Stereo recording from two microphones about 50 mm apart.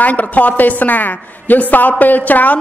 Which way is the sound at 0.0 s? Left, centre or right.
Left.